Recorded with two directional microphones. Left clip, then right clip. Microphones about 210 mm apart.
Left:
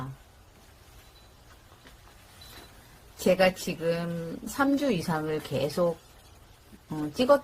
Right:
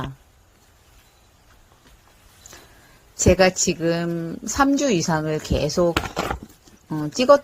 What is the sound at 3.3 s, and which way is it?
Speech, 35° right (ahead or behind).